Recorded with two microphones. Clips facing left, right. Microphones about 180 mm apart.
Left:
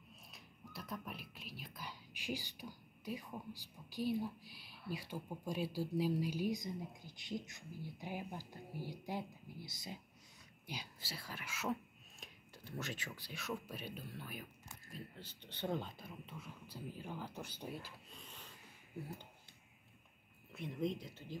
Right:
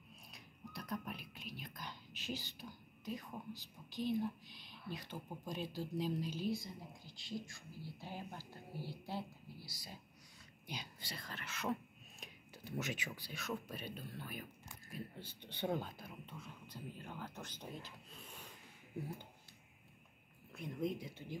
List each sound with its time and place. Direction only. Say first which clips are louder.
0.3 s speech: right 4 dB; centre (ahead or behind); by 9.9 s 20° left (ahead or behind)
10.7 s speech: even; 5° left (ahead or behind)
12.6 s speech: right 3 dB; 20° right (ahead or behind)
13.3 s speech: even; 5° left (ahead or behind)
14.9 s speech: right 3 dB; 10° right (ahead or behind); by 17.9 s 10° left (ahead or behind)
18.1 s a sound: right 1 dB; 10° right (ahead or behind)
20.5 s speech: even; centre (ahead or behind)